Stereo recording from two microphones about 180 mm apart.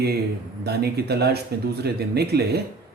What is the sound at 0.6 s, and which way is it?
Speech, 60° right (ahead or behind).